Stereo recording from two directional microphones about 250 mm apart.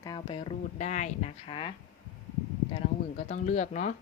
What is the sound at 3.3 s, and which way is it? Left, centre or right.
Speech, left.